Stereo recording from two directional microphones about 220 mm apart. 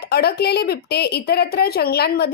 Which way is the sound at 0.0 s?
45° left (ahead or behind).